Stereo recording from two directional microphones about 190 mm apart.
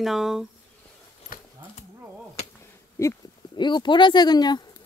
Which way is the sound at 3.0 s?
15° left (ahead or behind).